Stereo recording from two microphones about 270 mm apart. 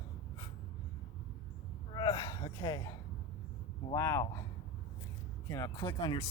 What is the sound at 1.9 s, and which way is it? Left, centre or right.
Gasp, centre.